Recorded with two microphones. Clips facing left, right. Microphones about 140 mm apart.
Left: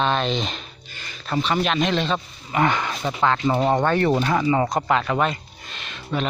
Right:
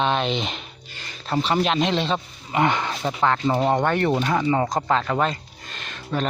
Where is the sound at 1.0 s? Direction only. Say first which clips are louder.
Even; 30° right (ahead or behind).